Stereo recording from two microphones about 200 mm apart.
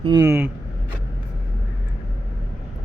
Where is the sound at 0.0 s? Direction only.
20° right (ahead or behind).